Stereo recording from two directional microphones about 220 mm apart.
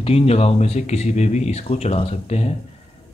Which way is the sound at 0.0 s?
25° left (ahead or behind).